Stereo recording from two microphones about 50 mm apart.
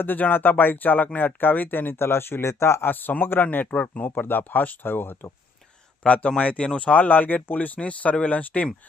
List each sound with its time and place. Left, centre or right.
0.0 s speech: left
2.8 s a man's voice: left
4.1 s speech: left
6.1 s a man's voice: left